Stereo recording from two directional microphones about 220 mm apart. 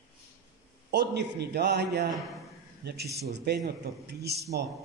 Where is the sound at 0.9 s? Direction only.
50° right (ahead or behind).